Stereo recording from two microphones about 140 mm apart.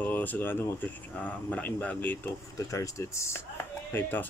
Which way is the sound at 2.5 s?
25° left (ahead or behind).